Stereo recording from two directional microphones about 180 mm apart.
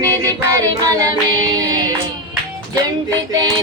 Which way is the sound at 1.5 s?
20° right (ahead or behind).